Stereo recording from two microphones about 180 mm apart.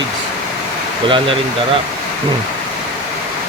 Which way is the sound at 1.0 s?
30° right (ahead or behind).